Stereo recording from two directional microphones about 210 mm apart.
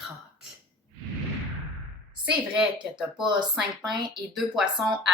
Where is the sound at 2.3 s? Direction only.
5° right (ahead or behind).